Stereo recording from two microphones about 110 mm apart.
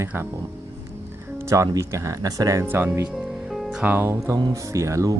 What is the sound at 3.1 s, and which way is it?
Music, 5° right (ahead or behind).